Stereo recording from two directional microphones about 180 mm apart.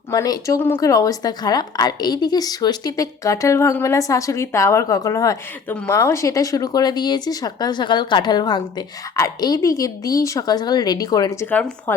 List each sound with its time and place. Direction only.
0.1 s a woman's voice: 20° left (ahead or behind)